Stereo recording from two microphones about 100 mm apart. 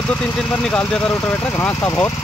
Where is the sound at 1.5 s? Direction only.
20° left (ahead or behind).